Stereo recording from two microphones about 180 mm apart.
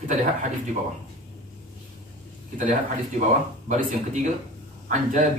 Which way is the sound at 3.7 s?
45° right (ahead or behind).